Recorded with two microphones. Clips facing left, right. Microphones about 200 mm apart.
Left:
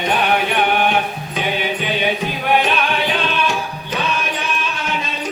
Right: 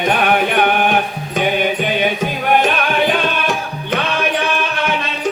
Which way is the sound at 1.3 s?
45° right (ahead or behind).